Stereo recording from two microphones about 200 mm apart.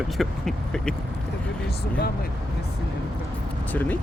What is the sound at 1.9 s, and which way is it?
Speech, 50° left (ahead or behind).